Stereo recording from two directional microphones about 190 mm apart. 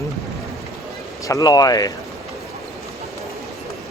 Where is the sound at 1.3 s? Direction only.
20° left (ahead or behind).